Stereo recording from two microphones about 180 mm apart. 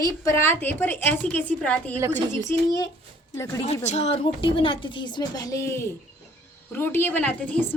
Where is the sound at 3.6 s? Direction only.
40° left (ahead or behind).